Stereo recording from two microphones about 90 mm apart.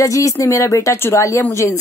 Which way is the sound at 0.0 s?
35° left (ahead or behind).